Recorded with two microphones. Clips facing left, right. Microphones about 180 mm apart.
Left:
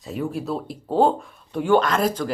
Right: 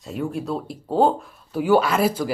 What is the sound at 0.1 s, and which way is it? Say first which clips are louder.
Speech: even; centre (ahead or behind).